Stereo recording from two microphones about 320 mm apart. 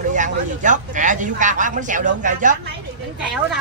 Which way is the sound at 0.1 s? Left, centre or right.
Right.